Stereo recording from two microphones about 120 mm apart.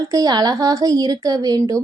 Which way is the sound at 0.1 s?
35° right (ahead or behind).